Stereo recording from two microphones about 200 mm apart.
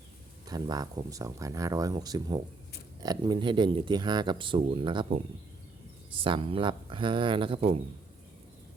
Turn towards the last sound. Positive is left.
turn(degrees=-25)  # may be behind; listen again after turning